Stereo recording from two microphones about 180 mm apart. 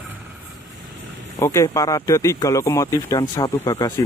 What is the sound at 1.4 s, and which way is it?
Speech, 15° left (ahead or behind).